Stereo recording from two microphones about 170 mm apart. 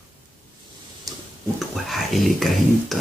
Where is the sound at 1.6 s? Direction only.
Centre (ahead or behind).